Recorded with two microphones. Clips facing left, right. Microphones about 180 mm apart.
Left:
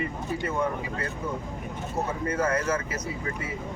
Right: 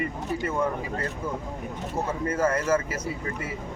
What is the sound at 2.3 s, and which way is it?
Speech, 25° right (ahead or behind).